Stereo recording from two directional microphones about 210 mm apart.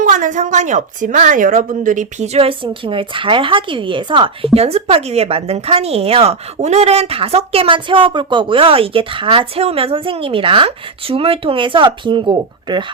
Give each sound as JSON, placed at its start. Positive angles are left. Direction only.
{"t": 0.0, "sound": "a woman's voice", "side_deg": -35}